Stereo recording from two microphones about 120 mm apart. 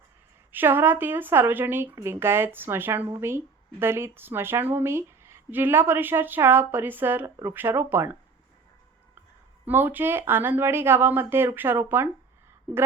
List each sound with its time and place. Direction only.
0.5 s speech: 15° right (ahead or behind)
9.6 s speech: 15° right (ahead or behind)